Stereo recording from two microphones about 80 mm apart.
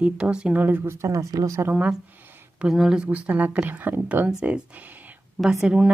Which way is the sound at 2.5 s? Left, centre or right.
Centre.